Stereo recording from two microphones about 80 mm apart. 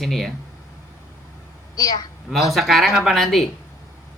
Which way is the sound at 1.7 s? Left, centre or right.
Left.